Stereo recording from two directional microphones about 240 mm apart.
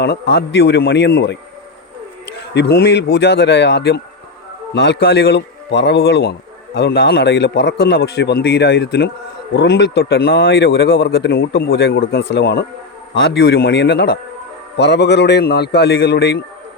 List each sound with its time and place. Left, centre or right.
0.0 s speech: left
2.6 s speech: left